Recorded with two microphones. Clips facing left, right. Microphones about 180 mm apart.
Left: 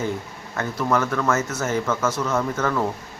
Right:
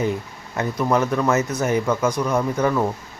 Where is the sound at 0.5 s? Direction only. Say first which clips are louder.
Right 2 dB; 20° right (ahead or behind).